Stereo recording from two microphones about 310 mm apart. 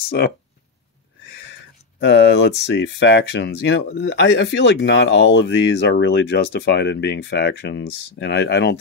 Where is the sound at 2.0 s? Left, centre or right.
Left.